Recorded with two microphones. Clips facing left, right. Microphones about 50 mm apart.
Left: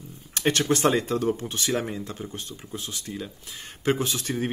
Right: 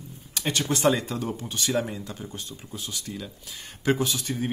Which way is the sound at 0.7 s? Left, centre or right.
Left.